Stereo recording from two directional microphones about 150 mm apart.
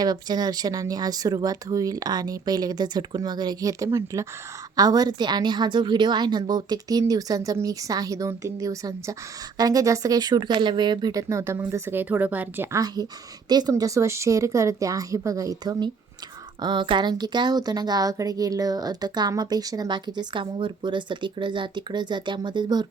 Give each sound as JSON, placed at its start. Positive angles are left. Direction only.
{"t": 0.0, "sound": "a woman's voice", "side_deg": -25}
{"t": 13.5, "sound": "speech", "side_deg": -25}